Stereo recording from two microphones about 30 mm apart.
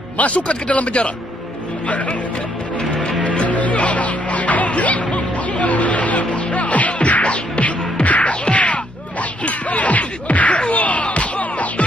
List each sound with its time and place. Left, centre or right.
0.4 s speech: left
3.3 s music: left